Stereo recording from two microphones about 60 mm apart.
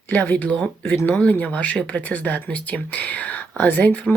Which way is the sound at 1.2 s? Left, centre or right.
Left.